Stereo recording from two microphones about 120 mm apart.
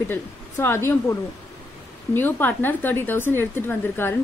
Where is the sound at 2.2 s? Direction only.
15° left (ahead or behind).